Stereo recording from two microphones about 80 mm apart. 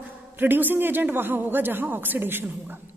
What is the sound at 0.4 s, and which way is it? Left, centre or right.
A woman's voice, right.